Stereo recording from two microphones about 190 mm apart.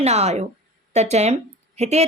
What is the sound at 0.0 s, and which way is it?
A woman's voice, 35° right (ahead or behind).